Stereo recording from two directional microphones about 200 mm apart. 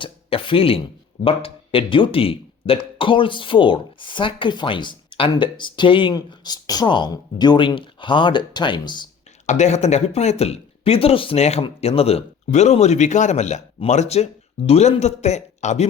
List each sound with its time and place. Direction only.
0.0 s speech: 25° left (ahead or behind)
9.5 s speech: 35° left (ahead or behind)